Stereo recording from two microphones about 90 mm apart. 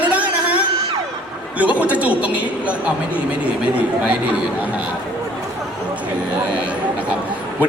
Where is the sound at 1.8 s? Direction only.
15° right (ahead or behind).